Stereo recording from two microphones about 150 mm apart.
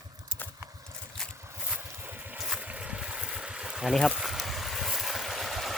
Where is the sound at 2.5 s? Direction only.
5° right (ahead or behind).